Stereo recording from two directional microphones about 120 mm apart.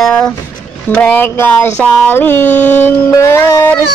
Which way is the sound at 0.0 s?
5° left (ahead or behind).